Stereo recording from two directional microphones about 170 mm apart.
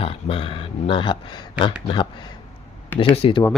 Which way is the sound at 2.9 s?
30° left (ahead or behind).